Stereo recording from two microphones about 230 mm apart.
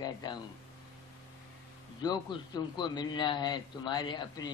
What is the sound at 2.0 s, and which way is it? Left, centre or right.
A man's voice, centre.